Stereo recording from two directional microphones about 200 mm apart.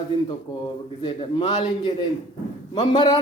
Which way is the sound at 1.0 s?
20° left (ahead or behind).